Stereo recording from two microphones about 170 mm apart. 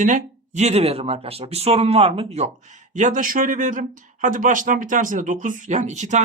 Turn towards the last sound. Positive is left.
turn(degrees=-45)  # may be behind; listen again after turning